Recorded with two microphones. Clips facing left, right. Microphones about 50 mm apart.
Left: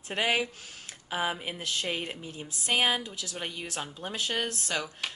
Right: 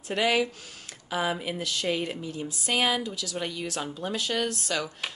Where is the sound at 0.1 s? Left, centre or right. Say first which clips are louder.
Right 3 dB; left.